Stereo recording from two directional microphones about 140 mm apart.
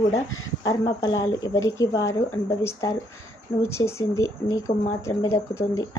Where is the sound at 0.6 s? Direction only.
30° left (ahead or behind).